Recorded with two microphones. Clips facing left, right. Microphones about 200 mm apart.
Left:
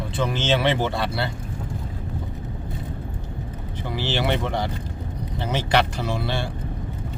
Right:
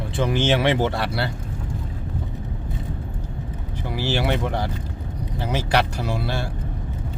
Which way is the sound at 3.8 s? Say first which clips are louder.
Right 1 dB; 10° right (ahead or behind).